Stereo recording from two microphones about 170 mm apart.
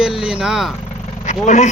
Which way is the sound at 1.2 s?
45° left (ahead or behind).